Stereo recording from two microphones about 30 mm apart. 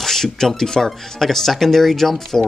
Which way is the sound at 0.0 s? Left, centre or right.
Centre.